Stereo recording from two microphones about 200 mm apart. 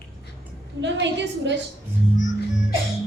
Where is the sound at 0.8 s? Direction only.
65° right (ahead or behind).